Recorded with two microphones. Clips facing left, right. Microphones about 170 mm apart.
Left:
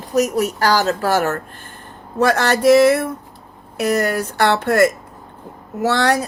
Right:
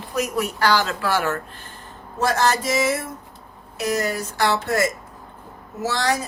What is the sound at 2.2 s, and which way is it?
Speech, 65° left (ahead or behind).